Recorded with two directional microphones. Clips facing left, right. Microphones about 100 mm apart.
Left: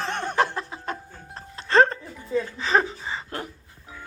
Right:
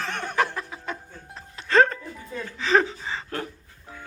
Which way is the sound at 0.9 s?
35° left (ahead or behind).